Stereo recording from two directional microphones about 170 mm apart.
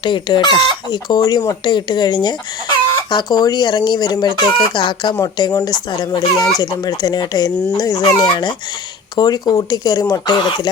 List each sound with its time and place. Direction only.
0.0 s speech: 30° left (ahead or behind)